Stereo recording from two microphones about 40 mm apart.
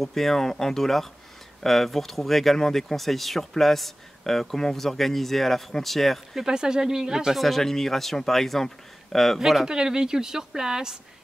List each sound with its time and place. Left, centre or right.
0.0 s speech: centre
6.3 s a woman's voice: centre
7.3 s speech: centre
9.4 s a woman's voice: centre
9.7 s a woman's voice: centre